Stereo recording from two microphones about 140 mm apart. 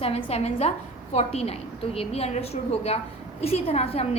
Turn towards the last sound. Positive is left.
turn(degrees=45)  # may be behind; listen again after turning